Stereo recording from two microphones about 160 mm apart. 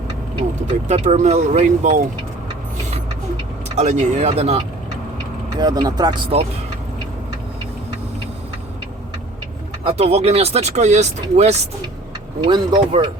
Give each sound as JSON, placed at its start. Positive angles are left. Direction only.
{"t": 0.9, "sound": "speech", "side_deg": -45}
{"t": 3.8, "sound": "speech", "side_deg": -45}
{"t": 5.5, "sound": "speech", "side_deg": -25}
{"t": 9.8, "sound": "speech", "side_deg": -40}
{"t": 12.4, "sound": "speech", "side_deg": -30}